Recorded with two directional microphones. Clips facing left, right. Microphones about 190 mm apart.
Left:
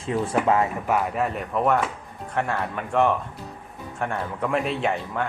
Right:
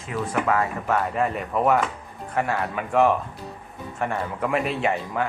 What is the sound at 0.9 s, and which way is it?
Speech, 5° left (ahead or behind).